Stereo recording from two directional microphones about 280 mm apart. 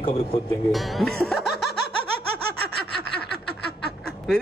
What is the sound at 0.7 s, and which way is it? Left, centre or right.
Speech, centre.